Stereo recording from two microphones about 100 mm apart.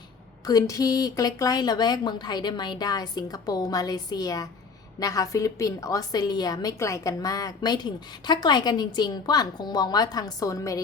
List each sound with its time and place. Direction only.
0.4 s a woman's voice: 40° left (ahead or behind)